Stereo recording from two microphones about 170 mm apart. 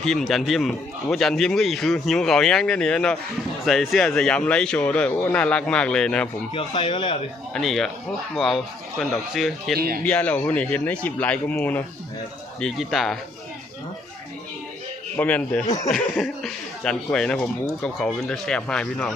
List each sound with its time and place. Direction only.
0.0 s speech: centre (ahead or behind)
6.5 s speech: 30° left (ahead or behind)
7.5 s speech: centre (ahead or behind)
9.7 s speech: 60° right (ahead or behind)
10.1 s speech: 10° left (ahead or behind)
15.1 s speech: 10° left (ahead or behind)